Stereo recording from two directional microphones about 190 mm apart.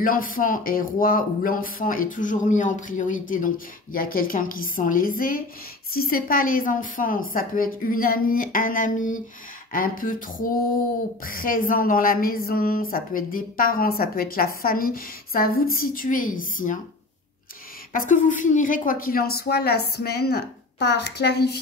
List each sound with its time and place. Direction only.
0.0 s speech: 45° left (ahead or behind)
17.9 s a woman's voice: 45° left (ahead or behind); by 21.5 s 60° left (ahead or behind)